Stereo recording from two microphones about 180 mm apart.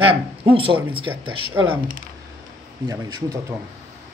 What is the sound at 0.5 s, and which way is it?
Speech, 30° right (ahead or behind).